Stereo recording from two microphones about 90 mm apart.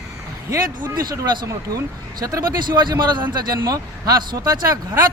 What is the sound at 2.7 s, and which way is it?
A man's voice, 55° right (ahead or behind).